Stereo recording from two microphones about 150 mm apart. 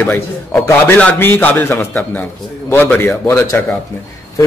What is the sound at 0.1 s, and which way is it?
A man's voice, 5° left (ahead or behind).